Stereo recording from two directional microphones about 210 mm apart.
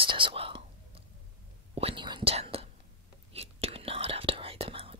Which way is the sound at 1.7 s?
25° right (ahead or behind).